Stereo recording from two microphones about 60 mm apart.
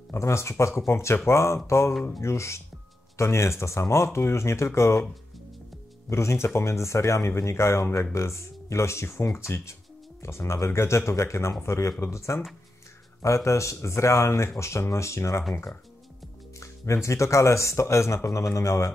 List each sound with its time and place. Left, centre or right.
0.1 s speech: left
6.0 s speech: left
16.5 s speech: left